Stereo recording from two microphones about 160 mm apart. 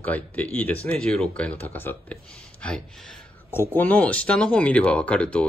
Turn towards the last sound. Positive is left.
turn(degrees=10)  # may be behind; listen again after turning